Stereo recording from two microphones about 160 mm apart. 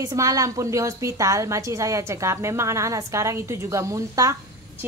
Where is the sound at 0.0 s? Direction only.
20° right (ahead or behind).